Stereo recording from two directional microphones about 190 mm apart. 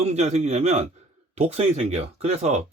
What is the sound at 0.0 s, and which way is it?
Speech, 35° right (ahead or behind).